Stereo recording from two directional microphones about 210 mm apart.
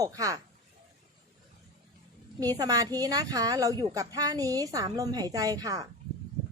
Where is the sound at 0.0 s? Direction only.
15° right (ahead or behind).